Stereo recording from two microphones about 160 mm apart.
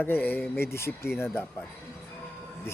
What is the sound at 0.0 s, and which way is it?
Speech, 10° left (ahead or behind).